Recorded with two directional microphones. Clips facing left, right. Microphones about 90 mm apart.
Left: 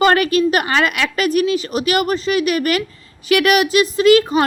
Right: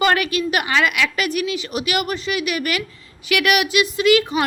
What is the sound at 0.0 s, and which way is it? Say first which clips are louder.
A woman's voice: left 5 dB; 40° left (ahead or behind).